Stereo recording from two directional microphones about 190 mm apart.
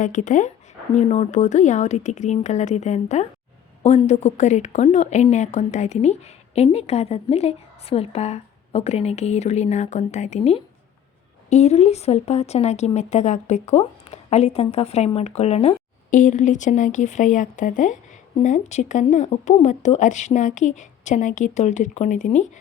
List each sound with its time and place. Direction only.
0.0 s a woman's voice: 40° left (ahead or behind)